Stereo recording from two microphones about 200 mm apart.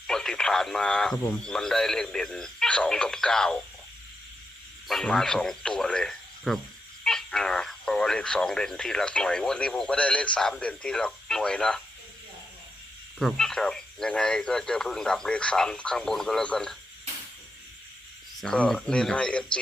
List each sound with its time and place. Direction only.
0.1 s speech: 5° left (ahead or behind)
4.9 s speech: centre (ahead or behind)
13.1 s speech: centre (ahead or behind)
18.3 s speech: 5° left (ahead or behind)